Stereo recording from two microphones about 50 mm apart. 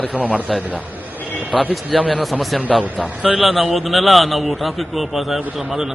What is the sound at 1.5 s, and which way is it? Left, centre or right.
Speech, left.